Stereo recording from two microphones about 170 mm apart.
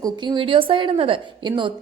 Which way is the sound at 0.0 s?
25° right (ahead or behind).